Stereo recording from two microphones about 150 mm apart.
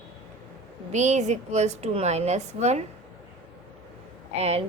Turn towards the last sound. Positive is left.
turn(degrees=-45)  # may be behind; listen again after turning